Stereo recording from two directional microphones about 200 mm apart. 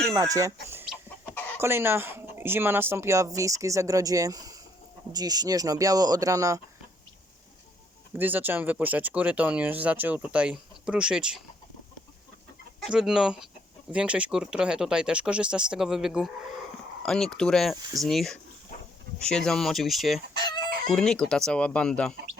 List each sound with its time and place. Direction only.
0.1 s chicken: 15° right (ahead or behind)
1.5 s speech: 10° right (ahead or behind)
8.1 s speech: 10° right (ahead or behind)
12.8 s speech: 5° right (ahead or behind)